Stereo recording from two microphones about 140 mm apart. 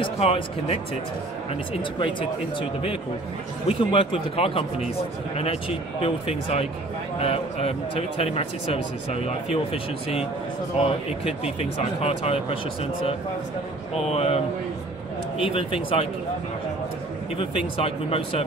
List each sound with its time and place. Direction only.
0.0 s speech: 45° left (ahead or behind)
3.6 s speech: 40° left (ahead or behind)
14.1 s speech: 45° left (ahead or behind)
15.4 s speech: 40° left (ahead or behind)
17.4 s speech: 45° left (ahead or behind)